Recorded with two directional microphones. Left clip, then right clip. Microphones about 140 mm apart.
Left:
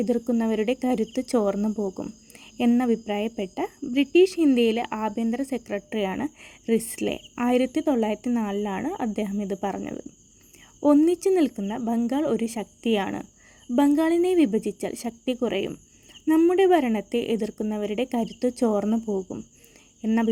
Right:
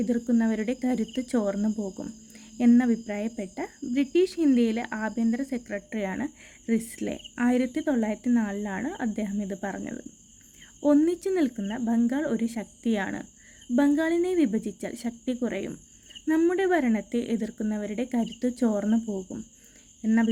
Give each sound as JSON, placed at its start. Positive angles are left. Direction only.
{"t": 0.0, "sound": "speech", "side_deg": 25}